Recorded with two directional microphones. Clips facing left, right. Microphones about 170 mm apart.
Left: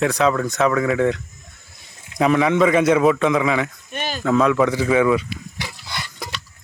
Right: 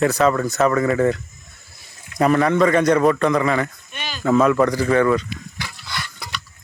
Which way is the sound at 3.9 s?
45° left (ahead or behind).